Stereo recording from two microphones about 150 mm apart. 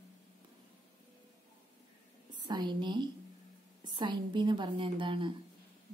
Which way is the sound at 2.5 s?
30° right (ahead or behind).